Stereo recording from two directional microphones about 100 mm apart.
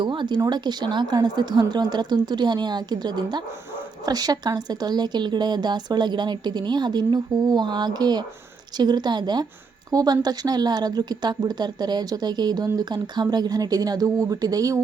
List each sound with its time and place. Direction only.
0.0 s a woman's voice: 50° right (ahead or behind)